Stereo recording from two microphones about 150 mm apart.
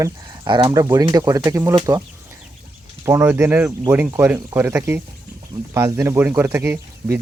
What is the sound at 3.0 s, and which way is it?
Speech, 15° right (ahead or behind).